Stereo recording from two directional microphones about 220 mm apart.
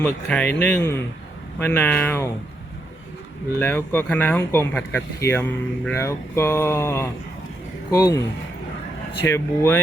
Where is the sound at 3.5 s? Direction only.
10° left (ahead or behind).